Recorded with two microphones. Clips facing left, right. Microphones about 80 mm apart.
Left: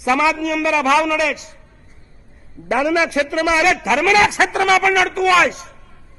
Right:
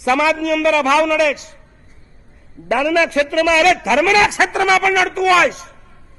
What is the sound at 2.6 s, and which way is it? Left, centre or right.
A man's voice, centre.